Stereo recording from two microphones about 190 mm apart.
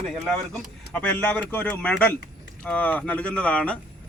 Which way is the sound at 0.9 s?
5° left (ahead or behind).